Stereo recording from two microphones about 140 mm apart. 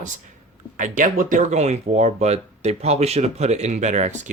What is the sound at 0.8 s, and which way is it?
Speech, 70° right (ahead or behind).